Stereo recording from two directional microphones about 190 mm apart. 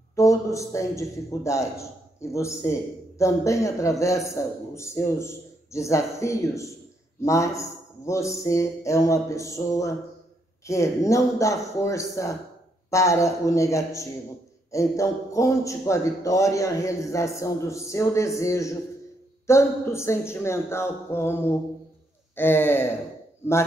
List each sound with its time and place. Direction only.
0.1 s a man's voice: 15° left (ahead or behind)
3.2 s a man's voice: 15° left (ahead or behind)